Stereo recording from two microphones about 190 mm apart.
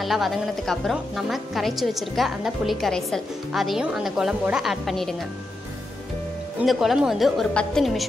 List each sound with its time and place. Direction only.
0.0 s speech: centre (ahead or behind)
6.6 s speech: centre (ahead or behind)